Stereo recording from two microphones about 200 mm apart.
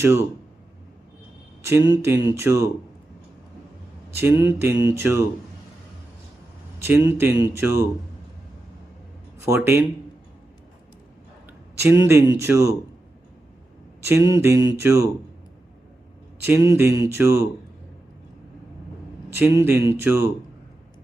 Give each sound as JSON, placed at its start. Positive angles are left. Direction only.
{"t": 0.0, "sound": "speech", "side_deg": -15}
{"t": 1.6, "sound": "speech", "side_deg": -15}
{"t": 4.1, "sound": "speech", "side_deg": -10}
{"t": 6.7, "sound": "speech", "side_deg": -10}
{"t": 9.4, "sound": "speech", "side_deg": -15}
{"t": 11.4, "sound": "speech", "side_deg": -10}
{"t": 14.0, "sound": "speech", "side_deg": -15}
{"t": 16.4, "sound": "speech", "side_deg": -15}
{"t": 19.3, "sound": "speech", "side_deg": -10}